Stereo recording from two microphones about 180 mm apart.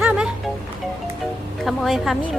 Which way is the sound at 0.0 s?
5° right (ahead or behind).